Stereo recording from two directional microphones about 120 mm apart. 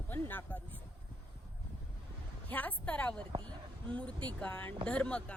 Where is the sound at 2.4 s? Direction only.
15° left (ahead or behind).